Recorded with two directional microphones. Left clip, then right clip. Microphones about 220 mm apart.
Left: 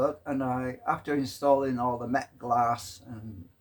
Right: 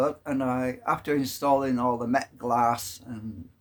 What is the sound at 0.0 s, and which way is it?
A man's voice, 40° right (ahead or behind).